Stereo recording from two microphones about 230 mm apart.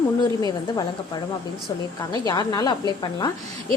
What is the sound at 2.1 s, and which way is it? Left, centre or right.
A woman's voice, centre.